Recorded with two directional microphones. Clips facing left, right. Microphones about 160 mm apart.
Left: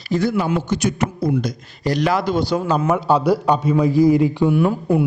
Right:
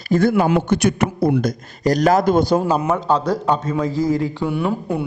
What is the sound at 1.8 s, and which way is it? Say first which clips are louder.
Speech: right 4 dB; 45° right (ahead or behind).